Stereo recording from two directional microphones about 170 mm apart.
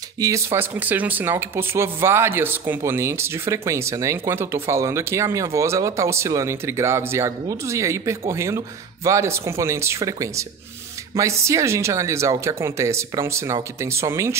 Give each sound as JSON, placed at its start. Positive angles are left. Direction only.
{"t": 0.2, "sound": "speech", "side_deg": -15}